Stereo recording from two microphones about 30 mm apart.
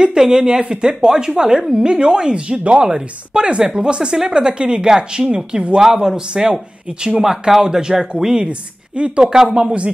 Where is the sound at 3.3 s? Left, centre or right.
Right.